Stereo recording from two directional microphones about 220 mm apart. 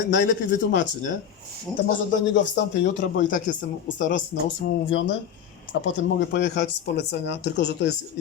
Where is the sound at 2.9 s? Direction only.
35° left (ahead or behind).